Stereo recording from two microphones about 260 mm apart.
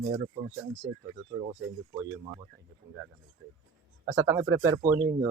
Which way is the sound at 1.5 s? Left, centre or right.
Centre.